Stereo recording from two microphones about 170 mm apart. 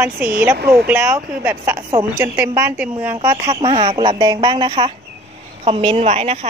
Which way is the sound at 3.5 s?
30° right (ahead or behind).